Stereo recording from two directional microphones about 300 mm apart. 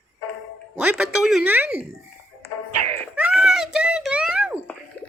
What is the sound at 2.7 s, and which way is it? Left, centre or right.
Music, right.